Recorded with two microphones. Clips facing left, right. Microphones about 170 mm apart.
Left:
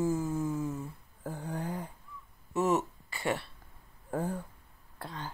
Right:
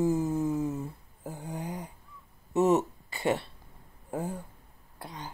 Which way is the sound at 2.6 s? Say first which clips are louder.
Right 5 dB; 40° right (ahead or behind).